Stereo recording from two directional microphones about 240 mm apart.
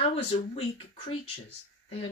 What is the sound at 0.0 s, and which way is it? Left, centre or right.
Speech, left.